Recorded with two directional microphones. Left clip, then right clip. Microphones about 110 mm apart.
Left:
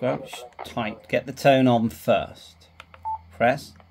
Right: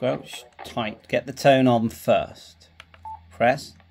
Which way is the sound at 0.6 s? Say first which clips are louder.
Right 1 dB; 25° right (ahead or behind).